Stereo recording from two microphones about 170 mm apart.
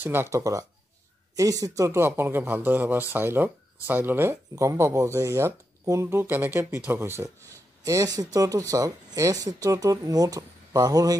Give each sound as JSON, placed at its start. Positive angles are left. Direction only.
{"t": 0.0, "sound": "speech", "side_deg": -15}